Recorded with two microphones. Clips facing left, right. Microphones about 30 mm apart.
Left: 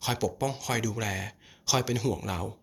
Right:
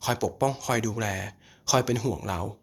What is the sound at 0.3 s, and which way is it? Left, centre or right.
Speech, centre.